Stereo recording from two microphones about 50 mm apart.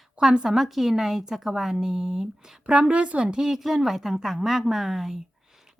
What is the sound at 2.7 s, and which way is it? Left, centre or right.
A woman's voice, right.